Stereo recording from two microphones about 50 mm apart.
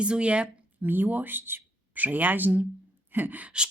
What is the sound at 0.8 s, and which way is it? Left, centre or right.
Speech, right.